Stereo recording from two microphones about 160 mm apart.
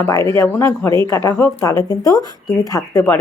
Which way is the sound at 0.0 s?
15° left (ahead or behind).